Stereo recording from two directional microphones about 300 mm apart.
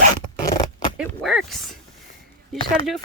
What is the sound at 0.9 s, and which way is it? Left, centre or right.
Speech, centre.